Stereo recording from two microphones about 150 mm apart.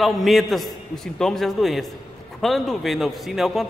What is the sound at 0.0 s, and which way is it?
A man's voice, centre (ahead or behind).